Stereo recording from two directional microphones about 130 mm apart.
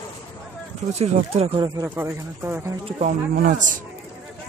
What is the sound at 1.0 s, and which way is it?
Speech, 50° right (ahead or behind).